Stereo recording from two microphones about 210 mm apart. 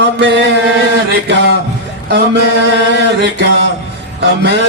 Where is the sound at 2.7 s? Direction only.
55° right (ahead or behind).